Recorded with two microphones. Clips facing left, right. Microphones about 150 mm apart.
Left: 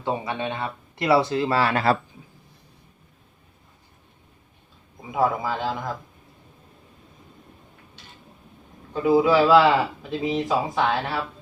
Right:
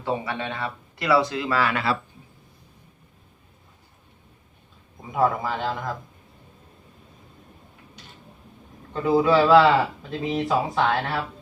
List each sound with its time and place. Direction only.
0.0 s speech: 20° left (ahead or behind); by 2.0 s 40° left (ahead or behind)
5.1 s a man's voice: 5° left (ahead or behind)
8.9 s speech: 5° left (ahead or behind)